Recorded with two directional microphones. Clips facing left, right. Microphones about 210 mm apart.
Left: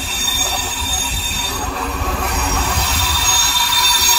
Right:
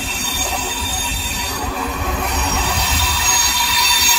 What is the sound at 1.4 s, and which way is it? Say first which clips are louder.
Train: even; centre (ahead or behind).